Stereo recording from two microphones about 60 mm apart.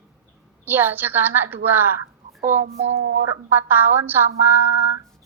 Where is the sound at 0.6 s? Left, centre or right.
Right.